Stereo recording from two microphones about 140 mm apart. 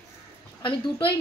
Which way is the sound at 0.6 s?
35° left (ahead or behind).